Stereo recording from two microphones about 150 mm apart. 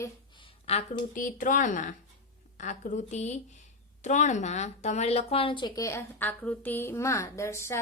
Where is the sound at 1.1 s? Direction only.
60° left (ahead or behind).